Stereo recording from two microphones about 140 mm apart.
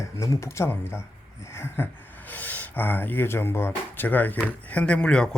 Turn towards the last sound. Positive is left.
turn(degrees=5)  # may be behind; listen again after turning